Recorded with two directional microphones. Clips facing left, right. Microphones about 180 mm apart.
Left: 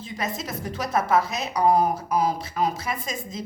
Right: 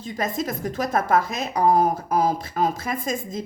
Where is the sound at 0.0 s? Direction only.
50° right (ahead or behind).